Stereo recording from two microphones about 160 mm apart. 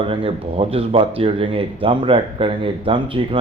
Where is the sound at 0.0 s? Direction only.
35° right (ahead or behind).